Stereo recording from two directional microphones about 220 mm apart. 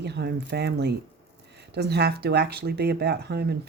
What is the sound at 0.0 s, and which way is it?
Speech, 50° right (ahead or behind).